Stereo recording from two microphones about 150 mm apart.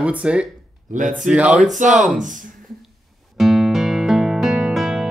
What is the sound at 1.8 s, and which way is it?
Speech, 55° right (ahead or behind).